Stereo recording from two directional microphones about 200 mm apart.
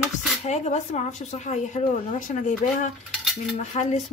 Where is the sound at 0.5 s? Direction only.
35° left (ahead or behind).